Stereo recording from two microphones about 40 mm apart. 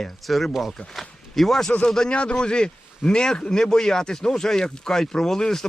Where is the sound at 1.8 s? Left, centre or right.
Centre.